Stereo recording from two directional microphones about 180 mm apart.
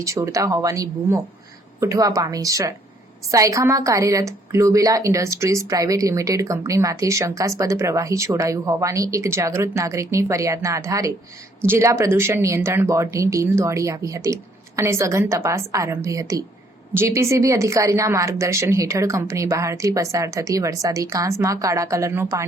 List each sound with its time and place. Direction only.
0.0 s a woman's voice: 15° right (ahead or behind)